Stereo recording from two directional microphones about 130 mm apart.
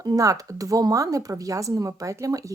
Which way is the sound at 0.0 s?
25° right (ahead or behind).